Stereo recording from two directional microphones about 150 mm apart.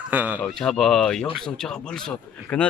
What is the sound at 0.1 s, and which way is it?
Speech, 10° right (ahead or behind).